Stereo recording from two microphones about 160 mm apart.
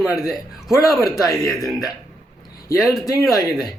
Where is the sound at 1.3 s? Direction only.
20° left (ahead or behind).